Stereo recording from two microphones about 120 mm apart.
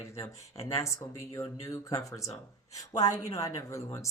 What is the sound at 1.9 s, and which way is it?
Speech, 25° left (ahead or behind).